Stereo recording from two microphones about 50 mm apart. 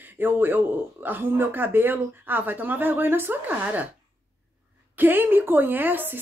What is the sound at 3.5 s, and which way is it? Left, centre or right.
Speech, right.